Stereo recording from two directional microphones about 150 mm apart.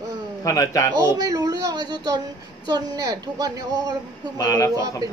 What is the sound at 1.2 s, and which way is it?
A woman's voice, 25° right (ahead or behind).